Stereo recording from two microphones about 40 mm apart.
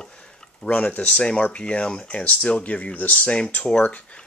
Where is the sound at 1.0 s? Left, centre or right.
Left.